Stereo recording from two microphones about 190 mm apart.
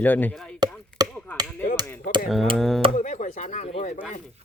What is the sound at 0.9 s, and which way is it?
Chop, 5° left (ahead or behind).